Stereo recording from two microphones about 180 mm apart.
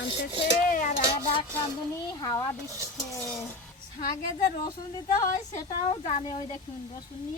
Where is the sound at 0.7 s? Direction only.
50° left (ahead or behind).